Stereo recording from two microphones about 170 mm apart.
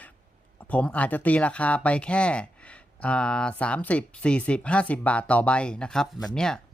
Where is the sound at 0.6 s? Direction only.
10° left (ahead or behind).